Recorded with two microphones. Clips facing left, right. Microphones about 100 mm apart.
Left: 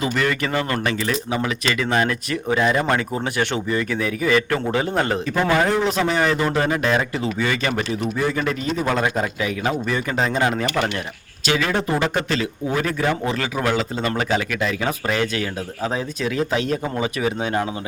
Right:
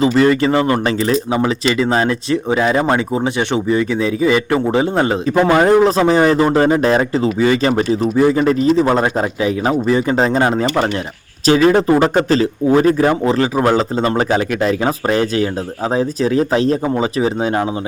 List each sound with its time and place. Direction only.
0.0 s speech: 25° right (ahead or behind)
5.5 s a man's voice: 40° right (ahead or behind)